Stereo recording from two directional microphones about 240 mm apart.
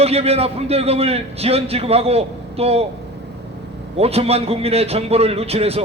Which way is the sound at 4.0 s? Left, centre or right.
Right.